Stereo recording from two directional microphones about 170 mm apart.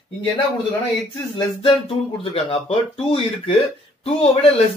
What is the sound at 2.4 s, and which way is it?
Speech, 35° left (ahead or behind).